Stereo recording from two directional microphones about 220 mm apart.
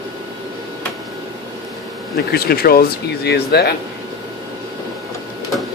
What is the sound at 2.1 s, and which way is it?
Speech, 45° left (ahead or behind).